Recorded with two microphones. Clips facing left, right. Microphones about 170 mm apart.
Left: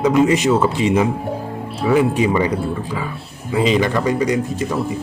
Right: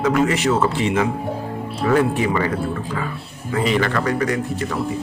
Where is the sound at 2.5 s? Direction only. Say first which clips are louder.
Left 1 dB; centre (ahead or behind).